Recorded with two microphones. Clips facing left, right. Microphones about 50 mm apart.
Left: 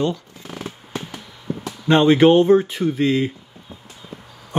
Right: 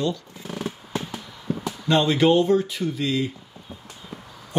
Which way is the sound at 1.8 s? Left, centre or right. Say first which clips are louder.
Left 6 dB; left.